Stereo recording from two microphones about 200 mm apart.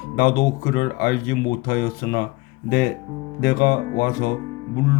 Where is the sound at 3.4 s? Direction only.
45° left (ahead or behind).